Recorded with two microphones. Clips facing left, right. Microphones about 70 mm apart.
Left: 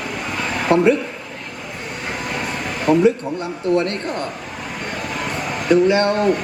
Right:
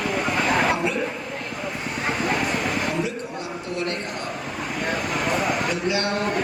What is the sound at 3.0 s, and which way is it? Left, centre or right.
Speech, left.